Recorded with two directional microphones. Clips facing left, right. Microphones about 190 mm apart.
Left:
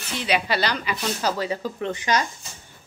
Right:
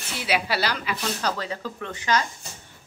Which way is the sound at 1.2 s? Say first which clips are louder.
Left 6 dB; 10° left (ahead or behind).